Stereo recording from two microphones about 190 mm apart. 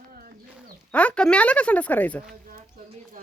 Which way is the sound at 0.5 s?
5° left (ahead or behind).